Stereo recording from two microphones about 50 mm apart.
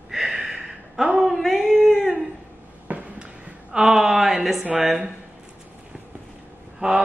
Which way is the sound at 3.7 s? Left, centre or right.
Centre.